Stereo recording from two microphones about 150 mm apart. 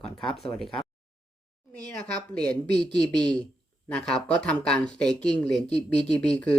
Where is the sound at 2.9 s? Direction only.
30° right (ahead or behind).